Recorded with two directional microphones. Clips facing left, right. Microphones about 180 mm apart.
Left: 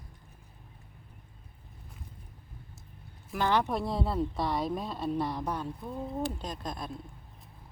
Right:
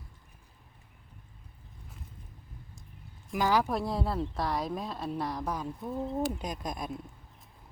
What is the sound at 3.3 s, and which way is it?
Speech, 5° right (ahead or behind).